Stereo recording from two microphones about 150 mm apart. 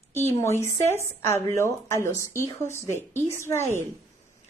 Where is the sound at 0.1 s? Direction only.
15° left (ahead or behind).